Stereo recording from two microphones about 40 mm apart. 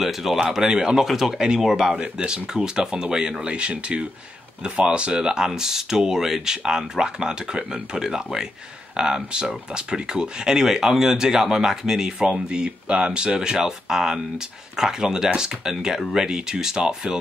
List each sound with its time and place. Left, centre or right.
0.0 s speech: centre
2.1 s speech: right
3.4 s speech: right
4.8 s speech: right